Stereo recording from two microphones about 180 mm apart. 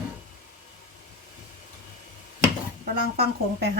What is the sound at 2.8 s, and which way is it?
Speech, 60° right (ahead or behind).